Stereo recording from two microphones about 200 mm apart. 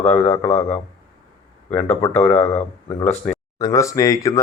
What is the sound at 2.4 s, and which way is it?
Speech, 30° left (ahead or behind).